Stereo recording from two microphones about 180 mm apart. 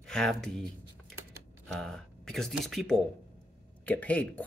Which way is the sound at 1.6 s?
5° left (ahead or behind).